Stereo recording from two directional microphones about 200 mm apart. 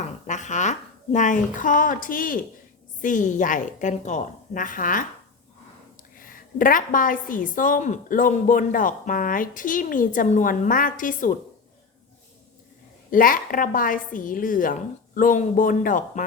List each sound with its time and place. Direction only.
0.3 s a woman's voice: 35° left (ahead or behind)
6.1 s a woman's voice: 45° left (ahead or behind)
13.1 s a woman's voice: 45° left (ahead or behind)